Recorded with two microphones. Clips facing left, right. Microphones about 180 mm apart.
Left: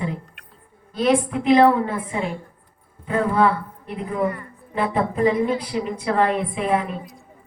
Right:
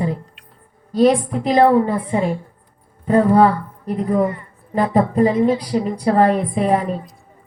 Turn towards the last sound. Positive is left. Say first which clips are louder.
# right 4 dB
turn(degrees=-40)  # may be behind; listen again after turning